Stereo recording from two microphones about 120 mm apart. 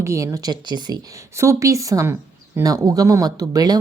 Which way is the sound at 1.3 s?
25° right (ahead or behind).